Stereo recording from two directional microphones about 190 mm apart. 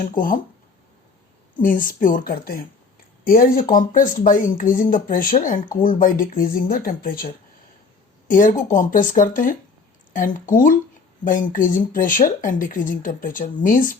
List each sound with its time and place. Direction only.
0.1 s speech: 45° left (ahead or behind)
1.6 s speech: 45° left (ahead or behind)
8.3 s speech: 45° left (ahead or behind)